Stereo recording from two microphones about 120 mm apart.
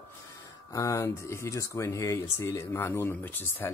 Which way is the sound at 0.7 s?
25° left (ahead or behind).